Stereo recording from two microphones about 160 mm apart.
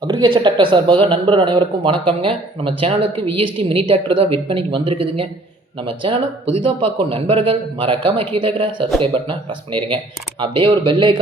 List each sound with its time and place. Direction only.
0.1 s speech: 30° right (ahead or behind)